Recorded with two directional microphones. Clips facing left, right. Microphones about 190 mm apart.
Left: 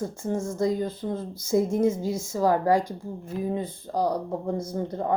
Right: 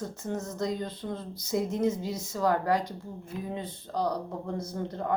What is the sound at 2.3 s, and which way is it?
Speech, 20° left (ahead or behind).